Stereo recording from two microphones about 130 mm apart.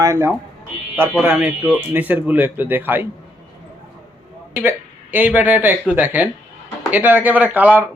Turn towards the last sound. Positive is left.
turn(degrees=-15)  # may be behind; listen again after turning